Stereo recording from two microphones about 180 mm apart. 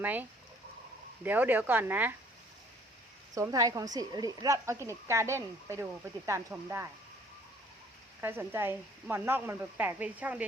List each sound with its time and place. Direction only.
0.0 s speech: 10° right (ahead or behind)
3.3 s speech: 20° right (ahead or behind)
8.2 s speech: 10° right (ahead or behind)